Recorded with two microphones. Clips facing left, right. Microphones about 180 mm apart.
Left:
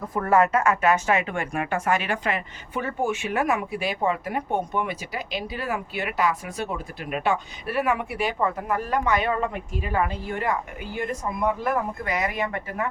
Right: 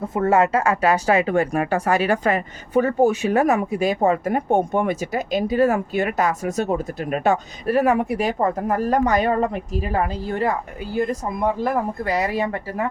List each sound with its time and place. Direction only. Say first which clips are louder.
0.1 s speech: right 2 dB; 25° right (ahead or behind)